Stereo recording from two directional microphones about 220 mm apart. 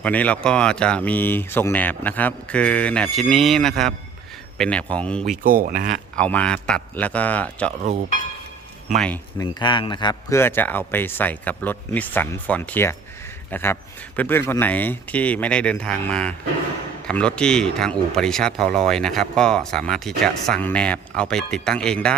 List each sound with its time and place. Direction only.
0.0 s speech: 5° left (ahead or behind)
5.4 s speech: 40° right (ahead or behind)
5.9 s speech: 5° left (ahead or behind)
9.0 s speech: 5° left (ahead or behind)